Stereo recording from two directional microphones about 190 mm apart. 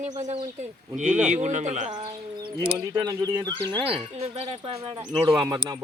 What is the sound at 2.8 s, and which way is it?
Speech, 20° right (ahead or behind).